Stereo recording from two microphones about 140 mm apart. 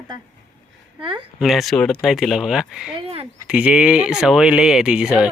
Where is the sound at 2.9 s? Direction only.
45° right (ahead or behind).